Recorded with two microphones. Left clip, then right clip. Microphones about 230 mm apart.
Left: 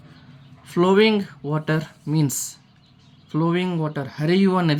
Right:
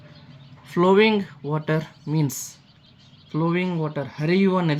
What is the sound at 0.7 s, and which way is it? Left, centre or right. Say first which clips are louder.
Speech: even; centre.